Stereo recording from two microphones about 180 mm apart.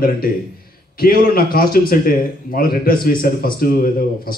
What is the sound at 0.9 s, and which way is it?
A man's voice, 55° left (ahead or behind).